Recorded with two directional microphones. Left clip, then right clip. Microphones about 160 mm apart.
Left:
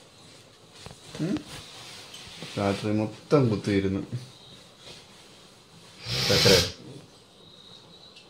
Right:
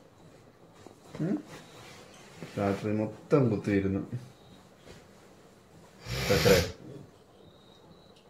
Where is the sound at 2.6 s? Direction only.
30° left (ahead or behind).